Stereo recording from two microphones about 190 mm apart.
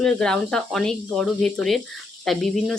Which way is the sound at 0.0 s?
5° left (ahead or behind).